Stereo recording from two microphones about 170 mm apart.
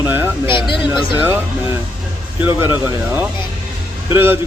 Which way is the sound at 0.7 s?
30° left (ahead or behind).